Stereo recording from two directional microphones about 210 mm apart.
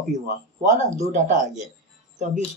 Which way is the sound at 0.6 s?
35° right (ahead or behind).